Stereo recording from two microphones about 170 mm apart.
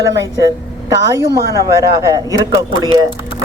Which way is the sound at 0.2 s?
20° right (ahead or behind).